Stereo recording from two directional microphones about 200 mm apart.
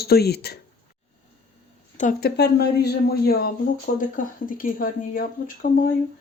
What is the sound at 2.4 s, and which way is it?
Speech, 55° left (ahead or behind).